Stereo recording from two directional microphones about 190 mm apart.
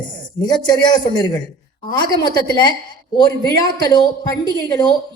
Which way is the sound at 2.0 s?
20° left (ahead or behind).